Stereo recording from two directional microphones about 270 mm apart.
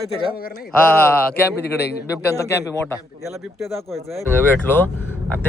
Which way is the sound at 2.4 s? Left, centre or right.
Centre.